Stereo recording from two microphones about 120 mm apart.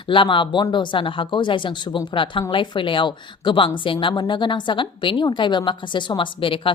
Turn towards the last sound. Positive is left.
turn(degrees=45)  # may be behind; listen again after turning